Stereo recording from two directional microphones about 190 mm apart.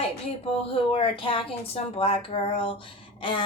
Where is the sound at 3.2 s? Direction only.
25° left (ahead or behind).